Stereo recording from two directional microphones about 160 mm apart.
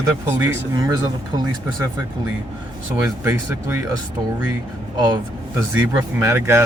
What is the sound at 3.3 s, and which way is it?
Speech, 15° right (ahead or behind).